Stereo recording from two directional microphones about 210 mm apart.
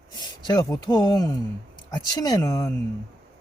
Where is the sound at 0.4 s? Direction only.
15° left (ahead or behind).